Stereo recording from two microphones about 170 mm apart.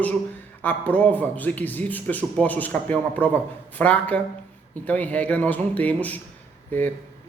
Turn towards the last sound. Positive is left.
turn(degrees=10)  # may be behind; listen again after turning